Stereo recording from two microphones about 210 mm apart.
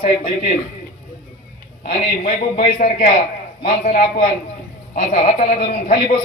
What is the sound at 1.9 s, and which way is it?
A man's voice, 35° left (ahead or behind).